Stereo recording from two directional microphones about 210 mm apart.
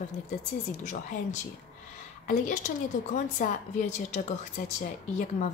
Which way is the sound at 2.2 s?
40° left (ahead or behind).